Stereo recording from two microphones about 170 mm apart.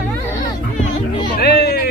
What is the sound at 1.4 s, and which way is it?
Speech, 70° left (ahead or behind).